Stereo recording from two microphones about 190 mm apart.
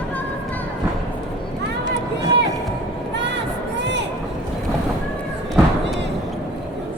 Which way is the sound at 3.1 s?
65° right (ahead or behind).